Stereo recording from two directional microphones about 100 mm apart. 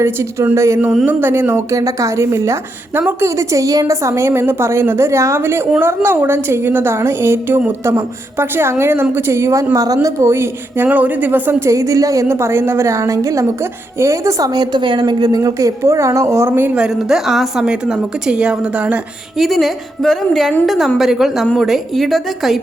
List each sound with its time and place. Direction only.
0.0 s a woman's voice: 25° right (ahead or behind)
16.7 s a woman's voice: 5° right (ahead or behind)
19.4 s a woman's voice: centre (ahead or behind)